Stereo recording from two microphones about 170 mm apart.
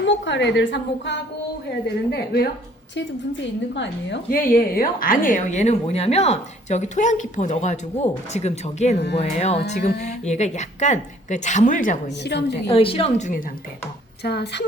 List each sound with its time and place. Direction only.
0.0 s a woman's voice: 90° left
2.0 s a woman's voice: 70° left (ahead or behind)
3.8 s a woman's voice: 75° left (ahead or behind); by 12.1 s 50° left (ahead or behind)
12.2 s a woman's voice: 90° left
12.6 s a woman's voice: 30° left (ahead or behind)
14.3 s a woman's voice: 75° left (ahead or behind)